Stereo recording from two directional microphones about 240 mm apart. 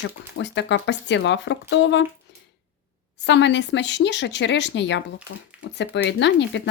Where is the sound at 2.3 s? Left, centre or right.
Left.